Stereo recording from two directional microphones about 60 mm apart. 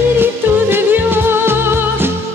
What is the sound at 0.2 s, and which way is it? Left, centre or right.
Music, right.